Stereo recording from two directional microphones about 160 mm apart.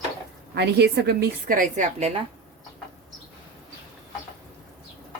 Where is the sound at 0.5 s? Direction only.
90° right; by 2.1 s 50° right (ahead or behind).